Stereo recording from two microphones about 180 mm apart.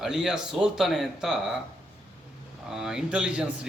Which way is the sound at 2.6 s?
5° right (ahead or behind).